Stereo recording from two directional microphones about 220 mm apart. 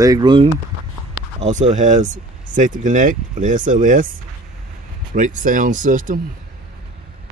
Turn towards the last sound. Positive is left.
turn(degrees=-35)  # may be behind; listen again after turning